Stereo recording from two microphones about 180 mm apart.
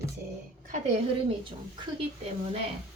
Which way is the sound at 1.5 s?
30° right (ahead or behind).